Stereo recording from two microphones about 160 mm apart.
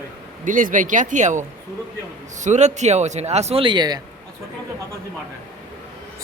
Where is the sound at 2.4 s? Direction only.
50° right (ahead or behind); by 4.0 s 25° right (ahead or behind).